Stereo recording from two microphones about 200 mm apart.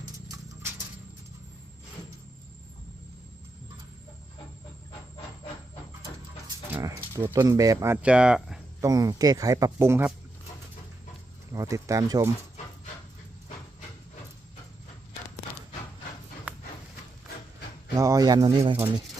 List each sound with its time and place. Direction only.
6.7 s speech: 10° right (ahead or behind)
8.8 s speech: 20° right (ahead or behind)
11.5 s speech: 15° right (ahead or behind)
17.9 s speech: 15° right (ahead or behind)